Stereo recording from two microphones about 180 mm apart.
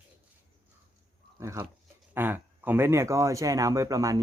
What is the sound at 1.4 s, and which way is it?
Speech, 15° right (ahead or behind).